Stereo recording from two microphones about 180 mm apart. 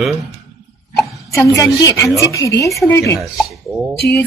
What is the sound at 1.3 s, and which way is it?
Speech, 15° left (ahead or behind).